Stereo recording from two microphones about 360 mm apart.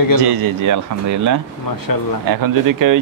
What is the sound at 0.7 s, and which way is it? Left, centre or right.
Speech, right.